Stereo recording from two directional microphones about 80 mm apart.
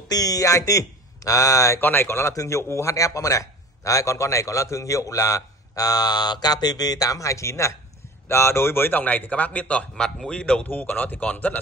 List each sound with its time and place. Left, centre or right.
0.1 s speech: left
1.8 s a man's voice: left; by 10.7 s centre
10.7 s speech: left